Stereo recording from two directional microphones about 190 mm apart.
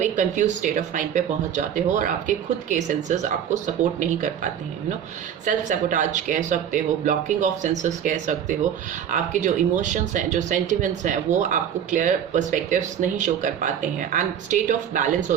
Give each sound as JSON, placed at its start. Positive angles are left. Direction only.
{"t": 0.0, "sound": "speech", "side_deg": -40}
{"t": 5.5, "sound": "speech", "side_deg": -40}